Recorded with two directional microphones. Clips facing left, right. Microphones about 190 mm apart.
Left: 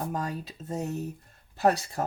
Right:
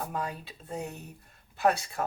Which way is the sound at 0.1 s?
40° left (ahead or behind).